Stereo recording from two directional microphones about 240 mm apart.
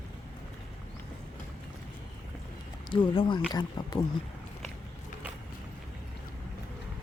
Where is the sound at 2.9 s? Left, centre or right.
Left.